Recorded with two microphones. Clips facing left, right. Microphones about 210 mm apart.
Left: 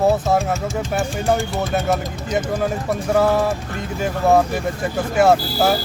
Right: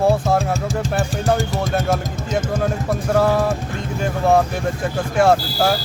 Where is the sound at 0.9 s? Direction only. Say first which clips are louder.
Even; centre (ahead or behind).